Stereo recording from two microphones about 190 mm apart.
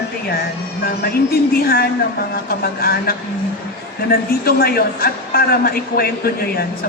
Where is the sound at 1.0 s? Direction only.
55° left (ahead or behind).